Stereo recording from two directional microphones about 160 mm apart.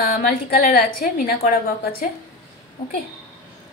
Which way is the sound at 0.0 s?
70° left (ahead or behind).